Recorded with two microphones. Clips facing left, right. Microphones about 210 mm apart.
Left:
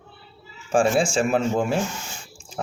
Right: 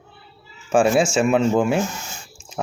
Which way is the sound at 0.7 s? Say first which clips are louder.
Right 3 dB; 30° left (ahead or behind).